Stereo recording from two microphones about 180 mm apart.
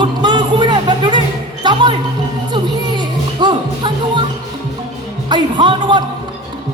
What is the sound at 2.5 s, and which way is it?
Music, 25° right (ahead or behind).